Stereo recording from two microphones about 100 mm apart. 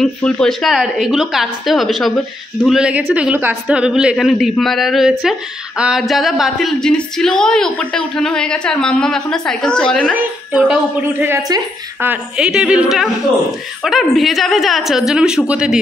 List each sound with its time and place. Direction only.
0.0 s a woman's voice: 5° left (ahead or behind)
3.0 s a woman's voice: 20° right (ahead or behind); by 10.1 s 10° left (ahead or behind)
10.1 s a woman's voice: 15° right (ahead or behind)
12.4 s a woman's voice: 5° right (ahead or behind)